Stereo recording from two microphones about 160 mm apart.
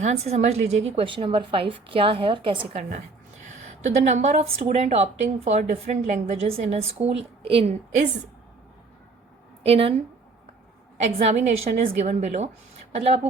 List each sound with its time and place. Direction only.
0.0 s a woman's voice: 45° right (ahead or behind)
3.4 s a woman's voice: 45° right (ahead or behind)
9.6 s a woman's voice: 40° right (ahead or behind)
10.9 s a woman's voice: 45° right (ahead or behind)